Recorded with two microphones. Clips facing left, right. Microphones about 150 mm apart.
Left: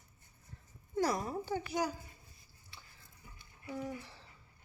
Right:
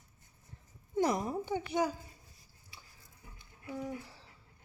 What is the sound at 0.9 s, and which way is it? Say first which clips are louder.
Speech: right 3 dB; 20° right (ahead or behind).